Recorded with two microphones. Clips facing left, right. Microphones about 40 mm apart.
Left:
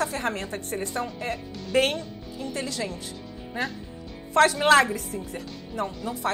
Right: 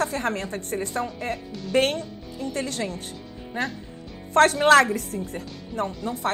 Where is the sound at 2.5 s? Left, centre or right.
Right.